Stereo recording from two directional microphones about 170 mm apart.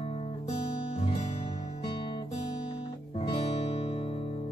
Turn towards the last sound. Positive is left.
turn(degrees=35)  # may be behind; listen again after turning